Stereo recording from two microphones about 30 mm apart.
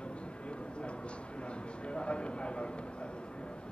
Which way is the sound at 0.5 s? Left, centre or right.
Left.